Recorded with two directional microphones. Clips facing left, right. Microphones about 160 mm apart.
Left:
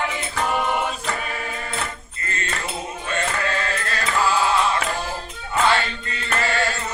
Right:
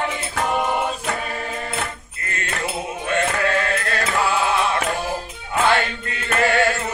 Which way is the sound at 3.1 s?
60° right (ahead or behind).